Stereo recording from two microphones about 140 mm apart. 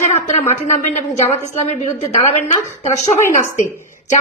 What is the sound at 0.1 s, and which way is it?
A woman's voice, 55° left (ahead or behind).